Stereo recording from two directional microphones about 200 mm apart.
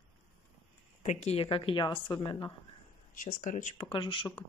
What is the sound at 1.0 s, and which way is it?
A woman's voice, 35° left (ahead or behind).